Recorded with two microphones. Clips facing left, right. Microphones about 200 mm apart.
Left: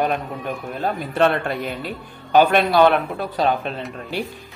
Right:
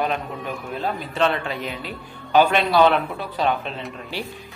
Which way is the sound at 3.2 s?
40° left (ahead or behind).